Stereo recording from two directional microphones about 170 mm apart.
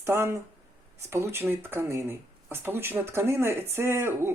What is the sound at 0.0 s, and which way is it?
Speech, 15° right (ahead or behind).